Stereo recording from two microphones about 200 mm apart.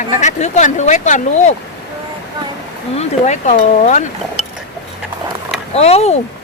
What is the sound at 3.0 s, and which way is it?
Speech, 35° left (ahead or behind).